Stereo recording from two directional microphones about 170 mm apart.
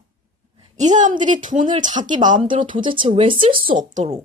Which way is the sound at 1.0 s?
50° right (ahead or behind).